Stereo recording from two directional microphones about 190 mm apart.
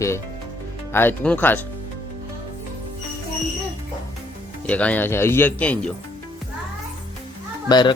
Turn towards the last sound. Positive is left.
turn(degrees=20)  # may be behind; listen again after turning